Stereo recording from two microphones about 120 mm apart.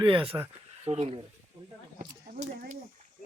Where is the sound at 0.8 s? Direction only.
55° right (ahead or behind).